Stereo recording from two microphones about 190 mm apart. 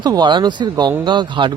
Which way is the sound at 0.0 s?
25° right (ahead or behind).